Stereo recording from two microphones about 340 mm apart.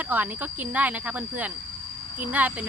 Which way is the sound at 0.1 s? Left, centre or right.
Centre.